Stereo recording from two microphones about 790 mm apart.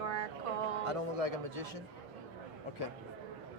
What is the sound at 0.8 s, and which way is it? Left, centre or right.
Speech, right.